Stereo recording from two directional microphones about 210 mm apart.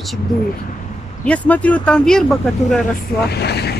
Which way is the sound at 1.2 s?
5° left (ahead or behind).